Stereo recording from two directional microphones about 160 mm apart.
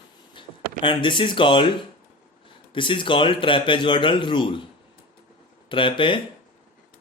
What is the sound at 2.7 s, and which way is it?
Speech, 30° left (ahead or behind).